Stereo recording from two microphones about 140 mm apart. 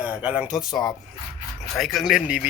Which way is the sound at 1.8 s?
Centre (ahead or behind).